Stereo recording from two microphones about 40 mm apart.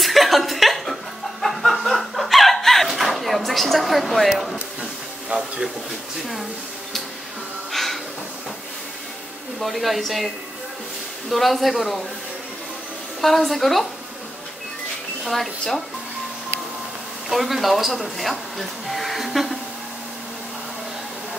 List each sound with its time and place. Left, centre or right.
0.0 s chuckle: centre
1.4 s snicker: centre
3.0 s a sound: centre
5.3 s speech: right
7.7 s a sound: centre
9.6 s speech: centre
13.2 s speech: centre
15.2 s speech: centre
17.3 s speech: centre